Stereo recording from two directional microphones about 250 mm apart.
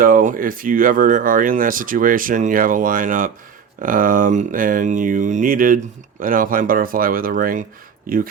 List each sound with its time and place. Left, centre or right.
0.0 s speech: right